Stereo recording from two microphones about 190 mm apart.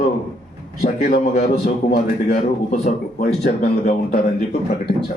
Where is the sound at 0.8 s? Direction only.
40° left (ahead or behind).